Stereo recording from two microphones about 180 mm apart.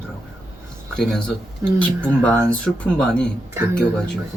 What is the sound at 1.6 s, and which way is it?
Speech, 15° right (ahead or behind).